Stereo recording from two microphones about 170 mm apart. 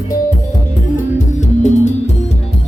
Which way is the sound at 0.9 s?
45° left (ahead or behind).